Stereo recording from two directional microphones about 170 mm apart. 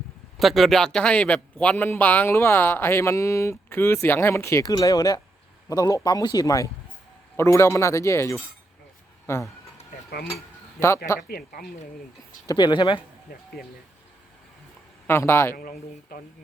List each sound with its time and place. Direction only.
0.3 s a man's voice: centre (ahead or behind)
10.8 s a man's voice: 15° left (ahead or behind)
11.2 s a man's voice: 60° left (ahead or behind)
12.5 s speech: 25° left (ahead or behind)
15.0 s a man's voice: 15° left (ahead or behind)
15.5 s a man's voice: 55° left (ahead or behind)